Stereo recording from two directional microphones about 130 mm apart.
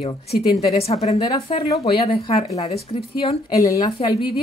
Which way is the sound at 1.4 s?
45° left (ahead or behind).